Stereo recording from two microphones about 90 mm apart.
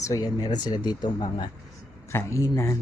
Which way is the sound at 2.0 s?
30° left (ahead or behind).